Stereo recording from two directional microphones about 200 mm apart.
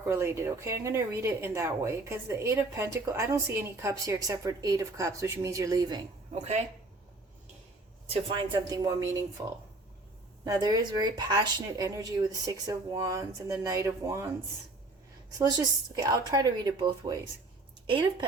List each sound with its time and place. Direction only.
0.1 s speech: 15° right (ahead or behind)
8.1 s a woman's voice: 25° right (ahead or behind)
10.4 s speech: 20° right (ahead or behind)
15.4 s a woman's voice: 20° right (ahead or behind)